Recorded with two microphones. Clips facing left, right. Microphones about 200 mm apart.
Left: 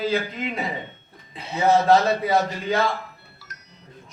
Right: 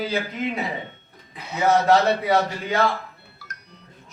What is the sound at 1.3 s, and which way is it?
Speech, 30° left (ahead or behind).